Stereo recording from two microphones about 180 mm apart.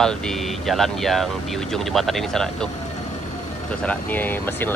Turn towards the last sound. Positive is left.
turn(degrees=10)  # may be behind; listen again after turning